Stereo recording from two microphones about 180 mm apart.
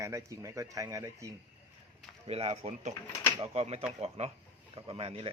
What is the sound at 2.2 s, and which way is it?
Speech, 35° right (ahead or behind).